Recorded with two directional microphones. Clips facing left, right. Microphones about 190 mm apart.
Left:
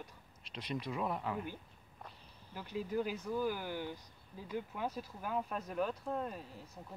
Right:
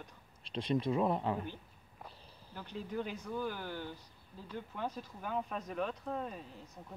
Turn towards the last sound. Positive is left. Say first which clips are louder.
# left 1 dB
turn(degrees=0)  # may be behind; listen again after turning